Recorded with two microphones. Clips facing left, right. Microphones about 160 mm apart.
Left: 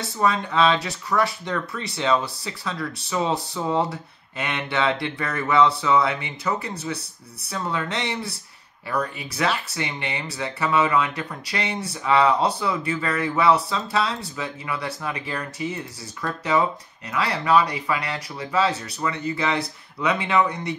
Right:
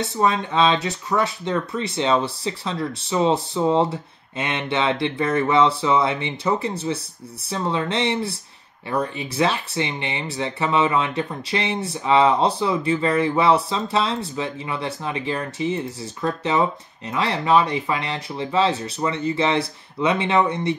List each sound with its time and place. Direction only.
0.0 s speech: 20° right (ahead or behind)